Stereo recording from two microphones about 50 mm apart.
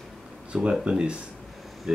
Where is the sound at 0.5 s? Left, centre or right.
Centre.